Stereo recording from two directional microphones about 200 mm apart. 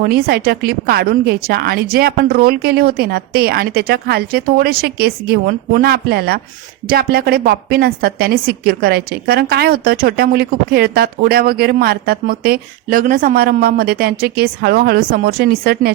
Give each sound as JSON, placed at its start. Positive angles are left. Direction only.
{"t": 0.0, "sound": "a woman's voice", "side_deg": -50}